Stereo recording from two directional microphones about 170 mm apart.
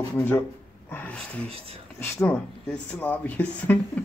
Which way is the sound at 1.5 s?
35° right (ahead or behind).